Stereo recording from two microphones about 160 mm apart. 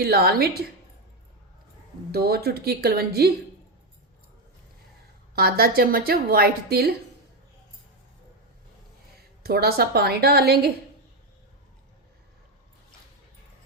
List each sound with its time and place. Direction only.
0.0 s a woman's voice: 75° right (ahead or behind)
2.1 s a woman's voice: 80° right
5.3 s a woman's voice: 75° right (ahead or behind)
9.4 s a woman's voice: 75° right (ahead or behind)